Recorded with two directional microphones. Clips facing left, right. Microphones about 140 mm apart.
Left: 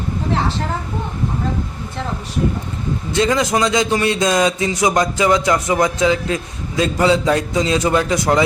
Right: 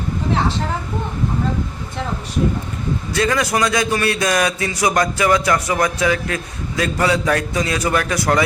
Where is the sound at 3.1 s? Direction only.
20° left (ahead or behind).